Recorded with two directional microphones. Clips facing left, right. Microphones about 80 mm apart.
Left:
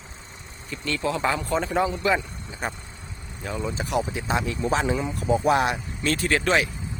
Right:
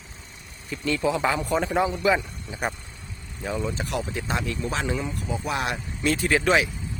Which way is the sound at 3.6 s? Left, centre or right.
Centre.